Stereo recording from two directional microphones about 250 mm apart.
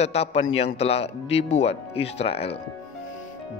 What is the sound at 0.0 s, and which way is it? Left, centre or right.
A man's voice, left.